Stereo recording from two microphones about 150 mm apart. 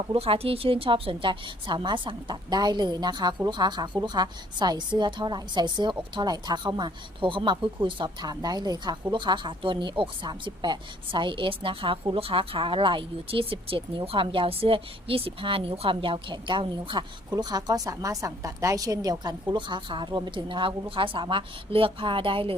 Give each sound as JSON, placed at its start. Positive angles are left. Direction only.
{"t": 0.1, "sound": "a woman's voice", "side_deg": -40}